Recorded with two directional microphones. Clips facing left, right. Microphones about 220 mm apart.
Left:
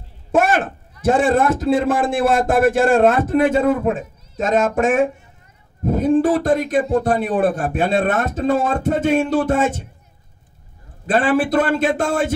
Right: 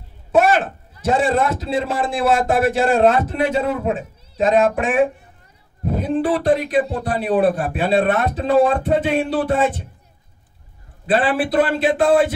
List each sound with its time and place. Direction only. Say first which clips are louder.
0.3 s a sound: right 1 dB; 50° left (ahead or behind)
1.0 s a man's voice: left 2 dB; 50° left (ahead or behind)
11.1 s a man's voice: left 2 dB; 45° left (ahead or behind)